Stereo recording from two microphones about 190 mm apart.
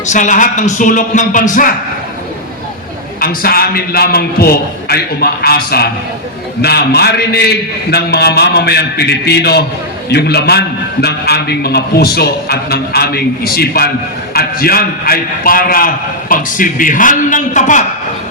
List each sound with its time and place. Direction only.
0.0 s a man's voice: 40° left (ahead or behind)
3.2 s a man's voice: 50° left (ahead or behind)